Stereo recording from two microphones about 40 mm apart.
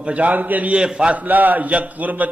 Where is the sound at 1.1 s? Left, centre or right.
Right.